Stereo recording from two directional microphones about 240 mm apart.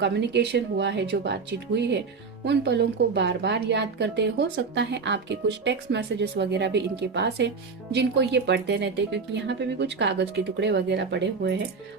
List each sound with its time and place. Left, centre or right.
0.0 s a woman's voice: right